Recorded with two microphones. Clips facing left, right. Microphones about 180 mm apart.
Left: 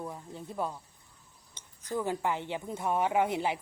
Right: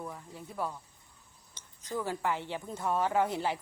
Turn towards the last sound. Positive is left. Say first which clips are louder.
# left 1 dB
turn(degrees=20)  # may be behind; listen again after turning